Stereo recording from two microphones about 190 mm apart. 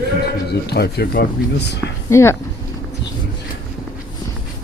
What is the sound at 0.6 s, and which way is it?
Speech, 60° left (ahead or behind).